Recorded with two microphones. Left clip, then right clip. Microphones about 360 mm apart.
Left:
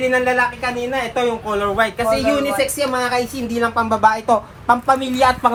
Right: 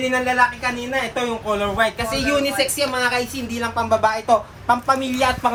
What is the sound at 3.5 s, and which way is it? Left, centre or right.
Speech, centre.